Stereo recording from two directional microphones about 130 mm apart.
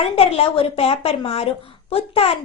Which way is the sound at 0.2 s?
50° left (ahead or behind).